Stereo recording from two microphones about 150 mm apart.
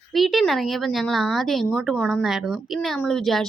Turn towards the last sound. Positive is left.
turn(degrees=0)  # may be behind; listen again after turning